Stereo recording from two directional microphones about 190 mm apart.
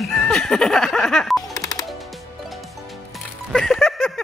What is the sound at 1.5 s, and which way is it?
Music, 20° left (ahead or behind).